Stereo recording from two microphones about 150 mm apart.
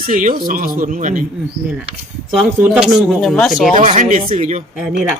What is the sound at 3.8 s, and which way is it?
Speech, 50° right (ahead or behind).